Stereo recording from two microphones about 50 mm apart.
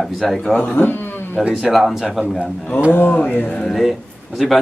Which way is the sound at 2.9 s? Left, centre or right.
Left.